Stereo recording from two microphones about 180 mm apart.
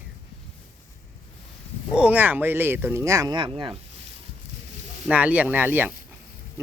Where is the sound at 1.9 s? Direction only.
5° right (ahead or behind); by 3.8 s 30° right (ahead or behind).